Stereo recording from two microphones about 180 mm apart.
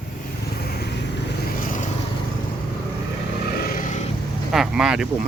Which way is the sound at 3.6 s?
55° left (ahead or behind).